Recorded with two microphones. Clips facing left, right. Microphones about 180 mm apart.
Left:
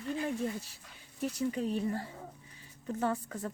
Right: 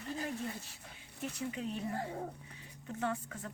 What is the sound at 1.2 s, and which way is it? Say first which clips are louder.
A woman's voice: left 6 dB; 40° left (ahead or behind).